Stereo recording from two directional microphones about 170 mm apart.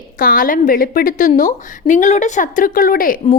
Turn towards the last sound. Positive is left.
turn(degrees=55)  # may be behind; listen again after turning